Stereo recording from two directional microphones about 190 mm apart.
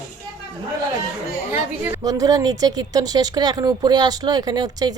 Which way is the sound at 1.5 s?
15° right (ahead or behind).